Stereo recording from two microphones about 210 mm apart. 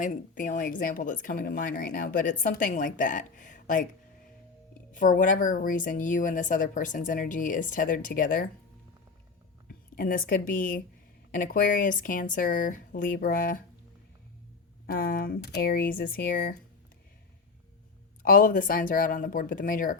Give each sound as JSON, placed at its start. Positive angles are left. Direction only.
{"t": 0.0, "sound": "speech", "side_deg": 40}
{"t": 4.9, "sound": "speech", "side_deg": 40}
{"t": 9.6, "sound": "a woman's voice", "side_deg": 45}
{"t": 14.8, "sound": "speech", "side_deg": 45}
{"t": 18.2, "sound": "speech", "side_deg": 40}